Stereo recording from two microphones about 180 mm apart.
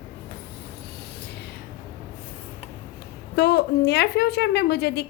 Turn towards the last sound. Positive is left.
turn(degrees=65)  # may be behind; listen again after turning